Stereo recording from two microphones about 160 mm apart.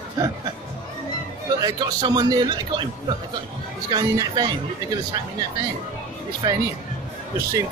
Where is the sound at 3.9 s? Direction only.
25° right (ahead or behind).